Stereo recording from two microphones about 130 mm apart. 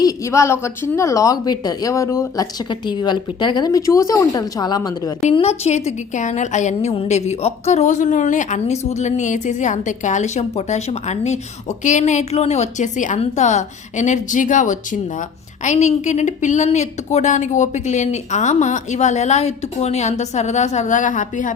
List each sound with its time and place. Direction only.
0.0 s a woman's voice: 25° left (ahead or behind)
2.6 s speech: 35° left (ahead or behind)
5.3 s a woman's voice: 50° left (ahead or behind)
6.9 s a woman's voice: 55° left (ahead or behind)
11.8 s a woman's voice: 70° left (ahead or behind)